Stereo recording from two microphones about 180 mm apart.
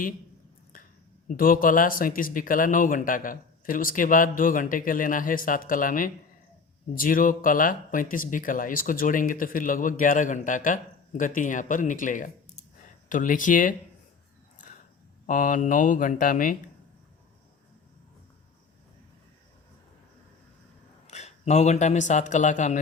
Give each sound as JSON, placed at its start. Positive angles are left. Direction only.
{"t": 1.3, "sound": "speech", "side_deg": 50}
{"t": 15.3, "sound": "speech", "side_deg": 45}
{"t": 21.1, "sound": "speech", "side_deg": 40}